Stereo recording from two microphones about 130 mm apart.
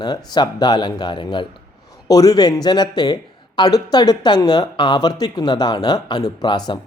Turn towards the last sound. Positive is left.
turn(degrees=35)  # may be behind; listen again after turning